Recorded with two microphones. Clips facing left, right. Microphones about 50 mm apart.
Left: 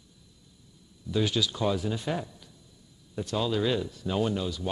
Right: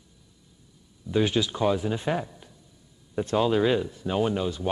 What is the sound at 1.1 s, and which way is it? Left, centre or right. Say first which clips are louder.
Speech: right 4 dB; right.